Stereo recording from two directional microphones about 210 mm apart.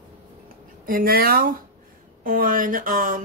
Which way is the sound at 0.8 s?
45° right (ahead or behind).